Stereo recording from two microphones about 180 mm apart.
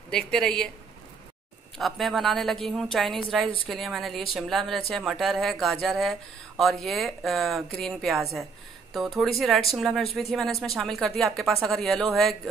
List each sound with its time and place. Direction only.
0.1 s speech: 5° left (ahead or behind)
1.8 s speech: centre (ahead or behind)